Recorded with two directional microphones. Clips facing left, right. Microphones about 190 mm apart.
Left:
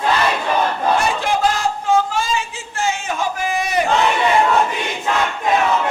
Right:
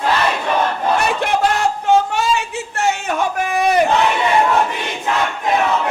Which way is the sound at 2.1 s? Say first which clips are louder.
Right 3 dB; 65° right (ahead or behind).